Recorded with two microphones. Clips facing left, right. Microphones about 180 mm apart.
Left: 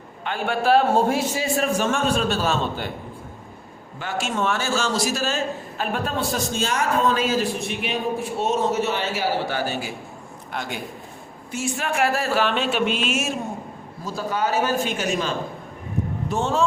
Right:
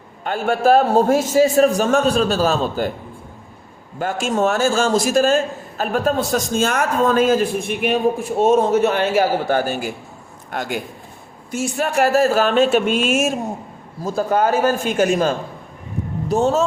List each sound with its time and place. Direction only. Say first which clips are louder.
0.3 s a man's voice: right 5 dB; 45° right (ahead or behind)
3.9 s a man's voice: right 6 dB; 45° right (ahead or behind)
11.5 s a man's voice: right 5 dB; 40° right (ahead or behind)
16.3 s a man's voice: right 6 dB; 40° right (ahead or behind)